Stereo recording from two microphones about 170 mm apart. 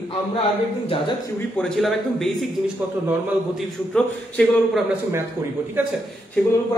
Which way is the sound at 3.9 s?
5° left (ahead or behind).